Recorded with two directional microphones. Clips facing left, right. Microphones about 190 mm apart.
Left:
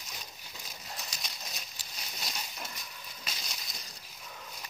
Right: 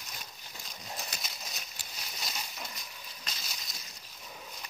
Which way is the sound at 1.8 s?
55° right (ahead or behind).